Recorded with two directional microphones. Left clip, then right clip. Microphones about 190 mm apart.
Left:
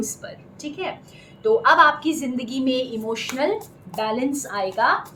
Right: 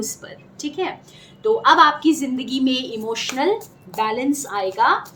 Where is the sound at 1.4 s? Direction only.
50° right (ahead or behind).